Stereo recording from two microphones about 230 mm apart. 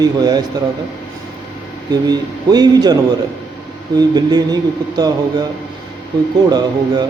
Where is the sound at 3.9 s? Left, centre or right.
Centre.